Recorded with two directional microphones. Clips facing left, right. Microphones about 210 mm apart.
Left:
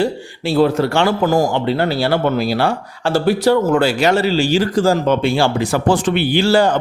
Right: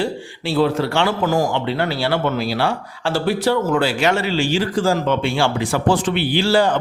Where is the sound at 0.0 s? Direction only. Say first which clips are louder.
Left 4 dB; 45° left (ahead or behind).